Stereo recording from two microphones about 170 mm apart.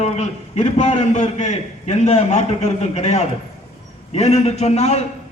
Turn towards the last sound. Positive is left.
turn(degrees=40)  # may be behind; listen again after turning